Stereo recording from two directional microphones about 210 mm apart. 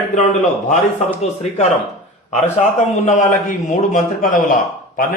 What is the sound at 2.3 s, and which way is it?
A man's voice, 30° left (ahead or behind).